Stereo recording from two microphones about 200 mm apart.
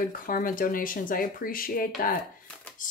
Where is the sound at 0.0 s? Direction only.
45° left (ahead or behind).